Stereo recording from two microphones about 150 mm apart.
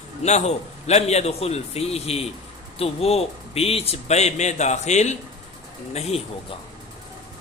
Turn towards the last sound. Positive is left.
turn(degrees=45)  # may be behind; listen again after turning